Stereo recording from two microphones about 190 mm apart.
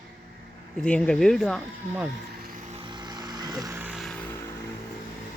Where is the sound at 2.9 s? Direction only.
20° right (ahead or behind).